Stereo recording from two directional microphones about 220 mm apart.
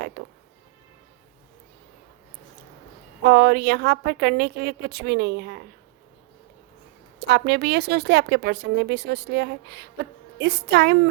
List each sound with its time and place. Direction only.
0.2 s music: 45° right (ahead or behind)
3.2 s speech: 45° right (ahead or behind)
7.2 s speech: 50° right (ahead or behind)